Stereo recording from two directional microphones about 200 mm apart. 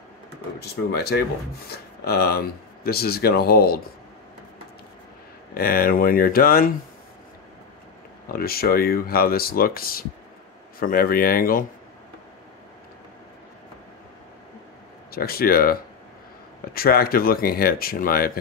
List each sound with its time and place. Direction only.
0.6 s speech: 55° left (ahead or behind)
5.5 s speech: 45° left (ahead or behind)
8.3 s speech: 50° left (ahead or behind)
15.0 s speech: 50° left (ahead or behind)